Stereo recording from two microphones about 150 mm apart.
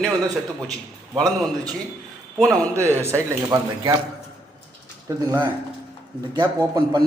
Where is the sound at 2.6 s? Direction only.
10° left (ahead or behind).